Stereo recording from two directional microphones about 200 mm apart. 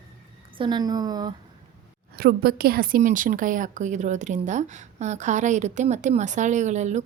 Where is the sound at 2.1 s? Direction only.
50° right (ahead or behind).